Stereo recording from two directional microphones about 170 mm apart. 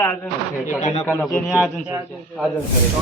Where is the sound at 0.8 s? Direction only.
45° left (ahead or behind).